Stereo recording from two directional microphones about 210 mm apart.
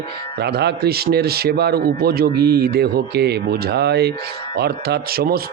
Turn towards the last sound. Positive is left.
turn(degrees=-45)  # may be behind; listen again after turning